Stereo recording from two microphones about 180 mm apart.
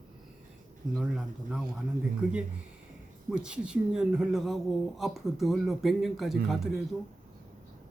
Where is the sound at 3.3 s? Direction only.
5° right (ahead or behind).